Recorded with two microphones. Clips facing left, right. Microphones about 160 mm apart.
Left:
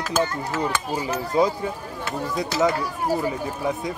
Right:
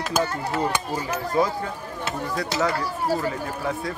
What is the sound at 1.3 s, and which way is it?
Speech, 20° left (ahead or behind).